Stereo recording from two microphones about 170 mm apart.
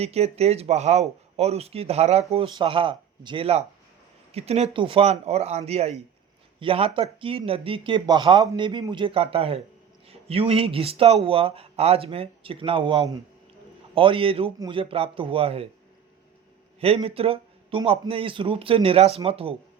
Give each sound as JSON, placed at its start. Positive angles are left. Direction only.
{"t": 0.0, "sound": "speech", "side_deg": -40}
{"t": 16.8, "sound": "speech", "side_deg": -35}